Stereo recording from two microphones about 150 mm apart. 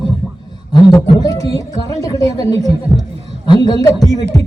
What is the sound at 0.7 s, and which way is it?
Speech, 25° left (ahead or behind).